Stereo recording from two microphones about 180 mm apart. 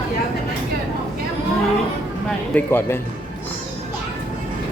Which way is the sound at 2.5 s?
10° left (ahead or behind).